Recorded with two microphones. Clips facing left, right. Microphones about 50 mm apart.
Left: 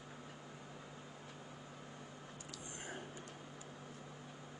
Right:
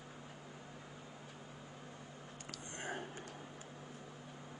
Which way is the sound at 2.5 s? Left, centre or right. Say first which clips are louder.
Right 5 dB; right.